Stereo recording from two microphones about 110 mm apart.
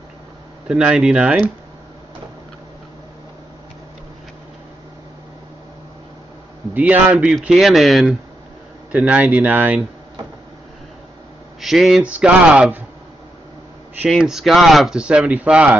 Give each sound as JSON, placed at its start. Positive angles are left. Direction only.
{"t": 0.7, "sound": "speech", "side_deg": -5}
{"t": 6.7, "sound": "speech", "side_deg": -15}
{"t": 8.9, "sound": "speech", "side_deg": -10}
{"t": 11.6, "sound": "speech", "side_deg": 0}
{"t": 14.0, "sound": "speech", "side_deg": -5}